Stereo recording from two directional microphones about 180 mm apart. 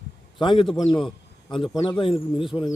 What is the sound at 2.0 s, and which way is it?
Speech, 30° left (ahead or behind).